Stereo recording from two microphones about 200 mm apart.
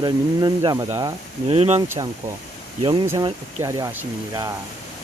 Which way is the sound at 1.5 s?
30° right (ahead or behind).